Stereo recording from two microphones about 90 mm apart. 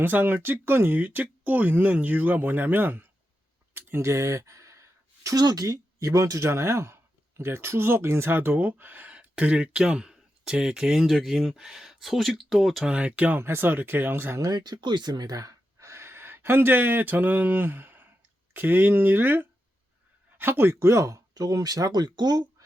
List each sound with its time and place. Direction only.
0.0 s speech: 20° right (ahead or behind); by 12.9 s 5° right (ahead or behind)
12.9 s speech: 15° right (ahead or behind)
14.3 s speech: 45° right (ahead or behind)